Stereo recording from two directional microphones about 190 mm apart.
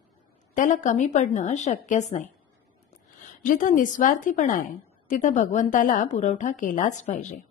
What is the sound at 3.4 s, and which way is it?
A woman's voice, 45° left (ahead or behind).